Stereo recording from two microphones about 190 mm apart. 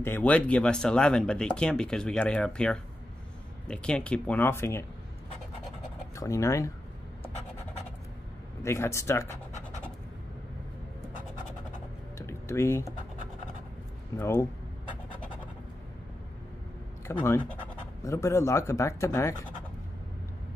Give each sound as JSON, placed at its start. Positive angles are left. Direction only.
{"t": 0.0, "sound": "speech", "side_deg": 10}
{"t": 6.1, "sound": "speech", "side_deg": 15}
{"t": 8.6, "sound": "speech", "side_deg": 15}
{"t": 12.2, "sound": "typing", "side_deg": 15}
{"t": 14.1, "sound": "speech", "side_deg": 15}
{"t": 17.1, "sound": "speech", "side_deg": 15}